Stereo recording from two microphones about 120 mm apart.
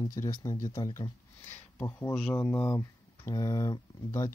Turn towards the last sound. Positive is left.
turn(degrees=30)  # may be behind; listen again after turning